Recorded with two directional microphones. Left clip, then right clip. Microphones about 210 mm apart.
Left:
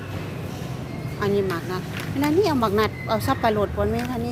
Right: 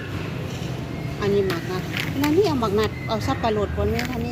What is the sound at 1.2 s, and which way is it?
Speech, 10° left (ahead or behind).